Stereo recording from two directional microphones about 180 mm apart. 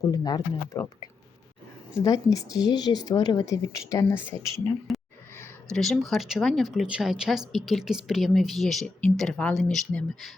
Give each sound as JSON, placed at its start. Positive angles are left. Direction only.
{"t": 0.1, "sound": "a woman's voice", "side_deg": 20}
{"t": 2.0, "sound": "a woman's voice", "side_deg": 20}
{"t": 4.9, "sound": "a sound", "side_deg": 0}
{"t": 5.7, "sound": "speech", "side_deg": 0}